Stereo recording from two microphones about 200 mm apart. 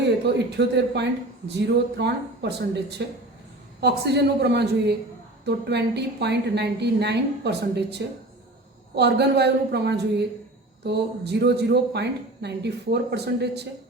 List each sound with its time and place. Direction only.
0.5 s speech: 55° right (ahead or behind)